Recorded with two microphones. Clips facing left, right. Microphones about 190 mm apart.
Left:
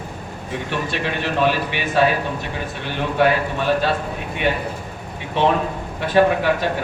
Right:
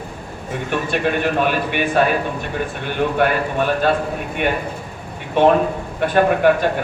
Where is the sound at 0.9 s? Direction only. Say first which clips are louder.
Right 5 dB; 50° right (ahead or behind).